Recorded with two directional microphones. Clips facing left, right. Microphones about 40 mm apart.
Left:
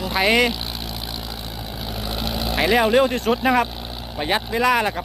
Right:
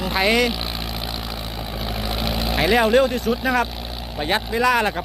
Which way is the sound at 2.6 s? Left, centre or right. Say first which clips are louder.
Even; centre.